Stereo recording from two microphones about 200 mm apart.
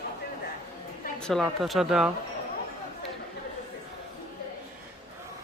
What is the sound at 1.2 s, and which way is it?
Speech, centre (ahead or behind).